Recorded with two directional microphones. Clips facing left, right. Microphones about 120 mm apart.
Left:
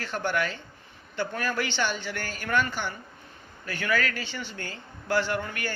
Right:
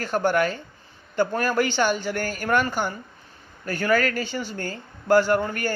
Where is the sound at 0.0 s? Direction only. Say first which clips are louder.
Right 7 dB; 45° right (ahead or behind).